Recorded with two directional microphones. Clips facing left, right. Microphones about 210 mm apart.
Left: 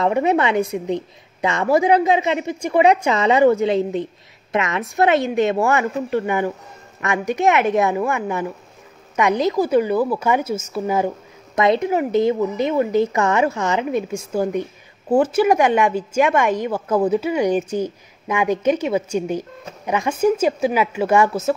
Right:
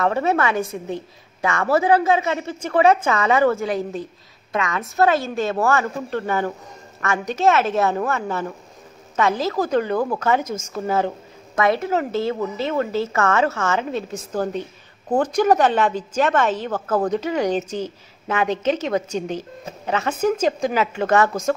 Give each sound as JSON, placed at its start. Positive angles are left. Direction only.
{"t": 0.0, "sound": "a woman's voice", "side_deg": 15}